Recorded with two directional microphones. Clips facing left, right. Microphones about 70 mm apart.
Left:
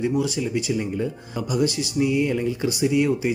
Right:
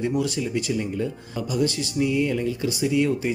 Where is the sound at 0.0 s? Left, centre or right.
Centre.